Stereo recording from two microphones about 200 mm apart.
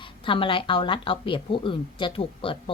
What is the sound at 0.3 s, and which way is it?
A woman's voice, 25° left (ahead or behind).